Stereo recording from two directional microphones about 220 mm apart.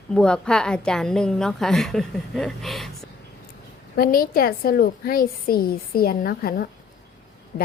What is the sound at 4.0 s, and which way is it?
A woman's voice, 40° left (ahead or behind).